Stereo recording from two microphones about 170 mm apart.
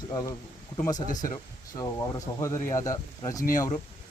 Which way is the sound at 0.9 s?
50° left (ahead or behind).